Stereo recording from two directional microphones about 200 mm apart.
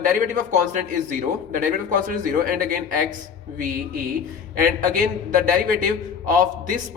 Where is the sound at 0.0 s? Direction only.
40° right (ahead or behind).